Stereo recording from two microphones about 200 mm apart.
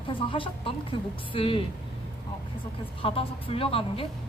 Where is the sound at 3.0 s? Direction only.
30° left (ahead or behind).